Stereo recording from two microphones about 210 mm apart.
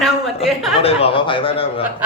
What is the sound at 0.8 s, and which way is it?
Speech, 30° left (ahead or behind).